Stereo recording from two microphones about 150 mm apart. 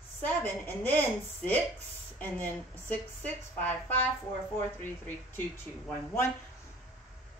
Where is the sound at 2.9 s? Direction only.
10° left (ahead or behind).